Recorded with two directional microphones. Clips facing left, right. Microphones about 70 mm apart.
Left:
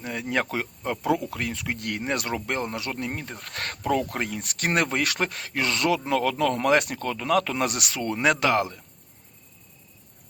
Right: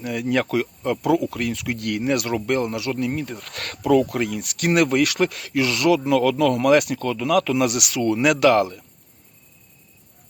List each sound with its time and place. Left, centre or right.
0.0 s speech: left